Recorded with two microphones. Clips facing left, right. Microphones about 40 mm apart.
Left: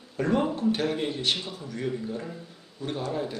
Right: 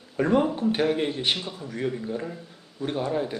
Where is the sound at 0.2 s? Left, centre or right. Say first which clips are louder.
Right 3 dB; centre.